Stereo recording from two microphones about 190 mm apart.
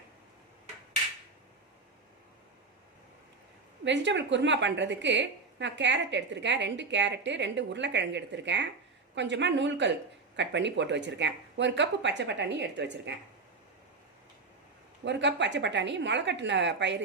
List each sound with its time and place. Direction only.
3.8 s a woman's voice: 70° right (ahead or behind)
15.0 s a woman's voice: 70° right (ahead or behind)